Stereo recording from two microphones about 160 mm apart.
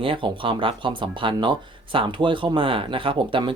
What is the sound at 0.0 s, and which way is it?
Speech, 30° right (ahead or behind).